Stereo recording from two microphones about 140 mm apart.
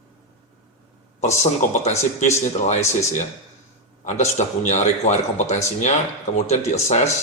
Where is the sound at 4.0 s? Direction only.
55° left (ahead or behind).